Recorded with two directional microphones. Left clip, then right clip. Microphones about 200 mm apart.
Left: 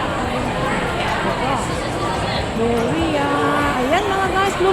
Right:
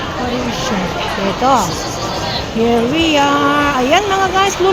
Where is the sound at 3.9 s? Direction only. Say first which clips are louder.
Right 5 dB; 25° right (ahead or behind).